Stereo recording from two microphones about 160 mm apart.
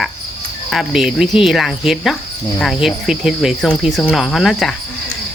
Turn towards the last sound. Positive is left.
turn(degrees=0)  # may be behind; listen again after turning